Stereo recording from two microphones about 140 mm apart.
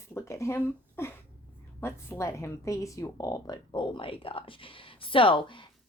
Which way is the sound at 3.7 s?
40° left (ahead or behind).